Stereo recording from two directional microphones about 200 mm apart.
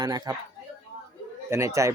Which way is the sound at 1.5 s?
15° right (ahead or behind).